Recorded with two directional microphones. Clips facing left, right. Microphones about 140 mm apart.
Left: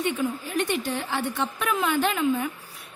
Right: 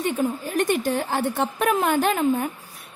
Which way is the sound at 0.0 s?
40° right (ahead or behind).